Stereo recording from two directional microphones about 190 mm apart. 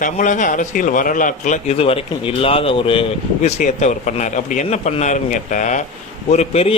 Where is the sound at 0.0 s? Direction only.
40° left (ahead or behind).